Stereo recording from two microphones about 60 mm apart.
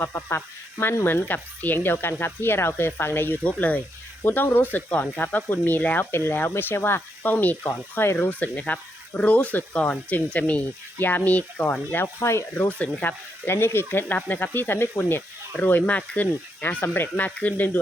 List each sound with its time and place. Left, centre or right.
0.0 s speech: left
3.4 s speech: left
12.0 s speech: left
12.5 s speech: left
13.4 s speech: left